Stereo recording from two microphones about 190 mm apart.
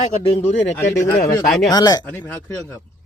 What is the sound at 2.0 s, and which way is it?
Speech, 10° left (ahead or behind).